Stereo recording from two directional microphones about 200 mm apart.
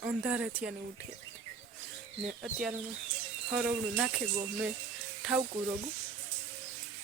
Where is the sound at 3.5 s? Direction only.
5° right (ahead or behind).